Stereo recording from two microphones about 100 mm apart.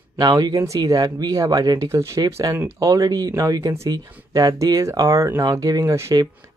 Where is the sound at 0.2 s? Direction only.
40° right (ahead or behind).